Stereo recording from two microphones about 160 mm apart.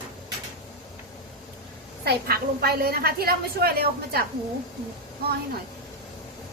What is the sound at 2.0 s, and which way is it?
A woman's voice, 75° right (ahead or behind).